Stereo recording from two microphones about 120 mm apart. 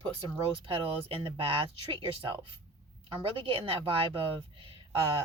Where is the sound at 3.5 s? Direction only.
50° right (ahead or behind).